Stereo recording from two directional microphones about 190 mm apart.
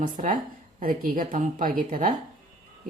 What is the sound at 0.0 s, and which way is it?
Speech, 45° right (ahead or behind).